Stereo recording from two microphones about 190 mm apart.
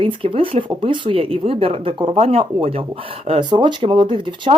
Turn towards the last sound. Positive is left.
turn(degrees=-25)  # may be behind; listen again after turning